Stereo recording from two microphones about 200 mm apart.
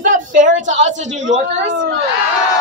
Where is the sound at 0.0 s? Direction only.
40° right (ahead or behind).